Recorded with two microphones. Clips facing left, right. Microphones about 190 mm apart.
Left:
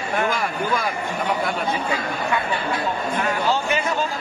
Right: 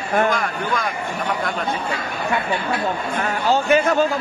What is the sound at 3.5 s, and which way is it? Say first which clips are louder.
Speech: right 5 dB; 50° right (ahead or behind).